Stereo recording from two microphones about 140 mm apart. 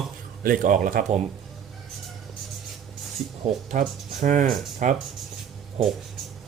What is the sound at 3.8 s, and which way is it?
Speech, 65° right (ahead or behind).